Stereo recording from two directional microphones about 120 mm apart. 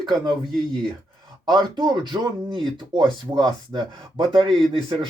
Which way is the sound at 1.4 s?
40° right (ahead or behind).